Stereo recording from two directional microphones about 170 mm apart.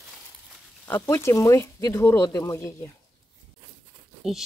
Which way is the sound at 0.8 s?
15° left (ahead or behind).